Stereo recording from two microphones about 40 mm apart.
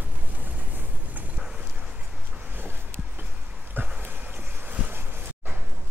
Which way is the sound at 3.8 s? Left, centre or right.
Right.